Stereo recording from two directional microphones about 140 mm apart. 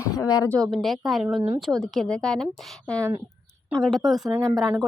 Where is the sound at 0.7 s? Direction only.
Centre (ahead or behind).